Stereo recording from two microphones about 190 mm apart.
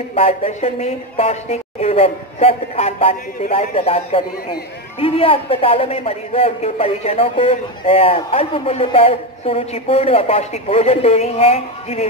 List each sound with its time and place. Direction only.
0.1 s a man's voice: 30° left (ahead or behind)